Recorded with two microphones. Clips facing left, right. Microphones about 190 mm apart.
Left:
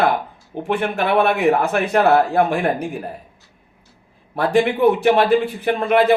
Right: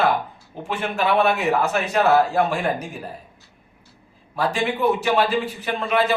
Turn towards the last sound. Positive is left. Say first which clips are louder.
# left 6 dB
turn(degrees=55)  # may be behind; listen again after turning